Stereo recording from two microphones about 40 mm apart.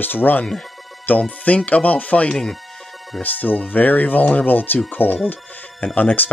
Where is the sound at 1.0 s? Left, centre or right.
Left.